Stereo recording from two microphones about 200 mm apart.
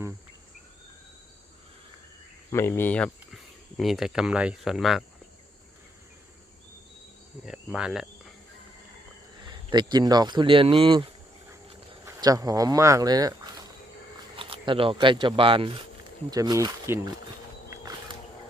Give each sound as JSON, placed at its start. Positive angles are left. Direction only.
{"t": 2.5, "sound": "speech", "side_deg": 10}
{"t": 7.4, "sound": "speech", "side_deg": -5}
{"t": 9.4, "sound": "speech", "side_deg": -25}
{"t": 17.7, "sound": "a sound", "side_deg": -15}